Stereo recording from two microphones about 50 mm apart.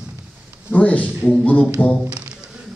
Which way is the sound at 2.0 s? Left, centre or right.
Right.